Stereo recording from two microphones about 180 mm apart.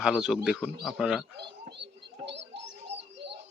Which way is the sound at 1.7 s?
70° right (ahead or behind).